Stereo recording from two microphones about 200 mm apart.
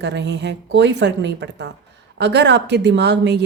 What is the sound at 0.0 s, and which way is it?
A woman's voice, 60° right (ahead or behind).